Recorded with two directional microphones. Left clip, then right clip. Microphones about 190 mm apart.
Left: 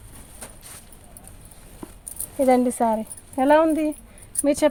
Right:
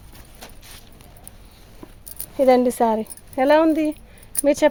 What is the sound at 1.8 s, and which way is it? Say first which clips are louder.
Keys jangling: left 3 dB; 5° left (ahead or behind).